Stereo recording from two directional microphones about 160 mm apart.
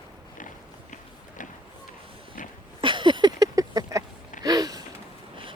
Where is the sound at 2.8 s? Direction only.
30° right (ahead or behind).